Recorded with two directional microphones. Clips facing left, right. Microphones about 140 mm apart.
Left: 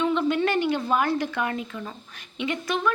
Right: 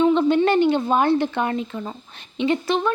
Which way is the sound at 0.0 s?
30° right (ahead or behind).